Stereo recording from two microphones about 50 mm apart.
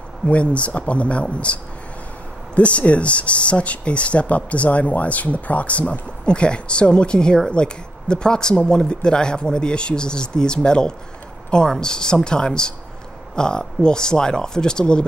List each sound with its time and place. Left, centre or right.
0.3 s speech: left